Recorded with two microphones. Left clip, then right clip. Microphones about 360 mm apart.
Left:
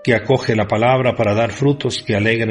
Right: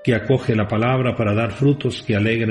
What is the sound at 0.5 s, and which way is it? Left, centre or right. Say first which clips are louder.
A man's voice: left 5 dB; left.